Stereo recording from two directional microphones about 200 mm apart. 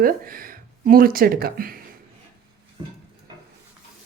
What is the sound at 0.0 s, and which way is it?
Speech, 45° right (ahead or behind).